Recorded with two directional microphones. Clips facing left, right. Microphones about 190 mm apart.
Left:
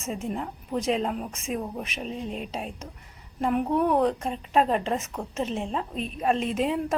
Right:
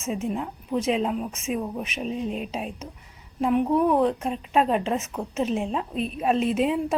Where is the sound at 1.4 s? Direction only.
35° left (ahead or behind).